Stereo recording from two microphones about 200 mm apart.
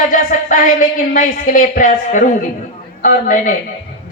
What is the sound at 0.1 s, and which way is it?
A man's voice, 40° left (ahead or behind).